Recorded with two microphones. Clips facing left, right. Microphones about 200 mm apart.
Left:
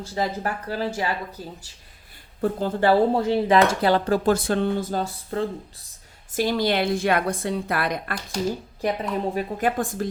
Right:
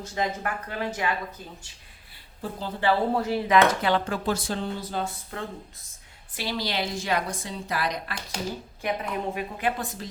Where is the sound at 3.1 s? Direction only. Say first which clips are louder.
Left 3 dB; 30° left (ahead or behind).